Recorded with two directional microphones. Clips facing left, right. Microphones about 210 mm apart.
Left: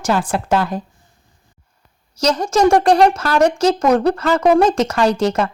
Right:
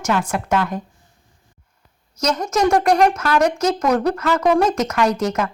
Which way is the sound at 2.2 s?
30° left (ahead or behind).